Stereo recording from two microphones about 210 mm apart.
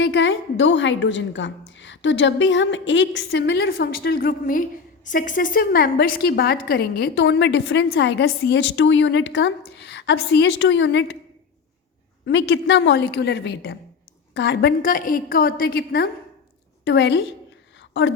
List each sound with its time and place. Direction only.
0.0 s a woman's voice: 60° left (ahead or behind)
12.2 s a woman's voice: 60° left (ahead or behind)
16.8 s a woman's voice: 60° left (ahead or behind)